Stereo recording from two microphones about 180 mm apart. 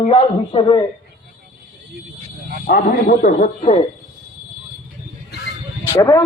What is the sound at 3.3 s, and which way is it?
Speech, 40° left (ahead or behind).